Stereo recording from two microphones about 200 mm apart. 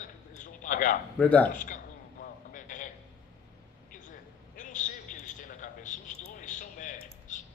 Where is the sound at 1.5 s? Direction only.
40° left (ahead or behind).